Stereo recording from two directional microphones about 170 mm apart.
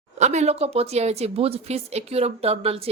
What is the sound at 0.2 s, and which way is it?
A woman's voice, 40° right (ahead or behind).